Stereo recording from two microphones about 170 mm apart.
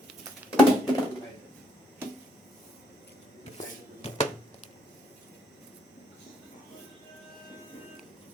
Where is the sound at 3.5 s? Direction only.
40° left (ahead or behind).